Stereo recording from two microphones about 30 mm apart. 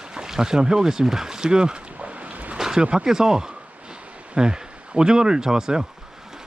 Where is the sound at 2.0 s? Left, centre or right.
Right.